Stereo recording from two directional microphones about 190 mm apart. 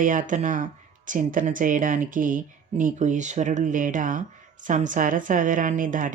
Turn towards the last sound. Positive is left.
turn(degrees=-45)  # may be behind; listen again after turning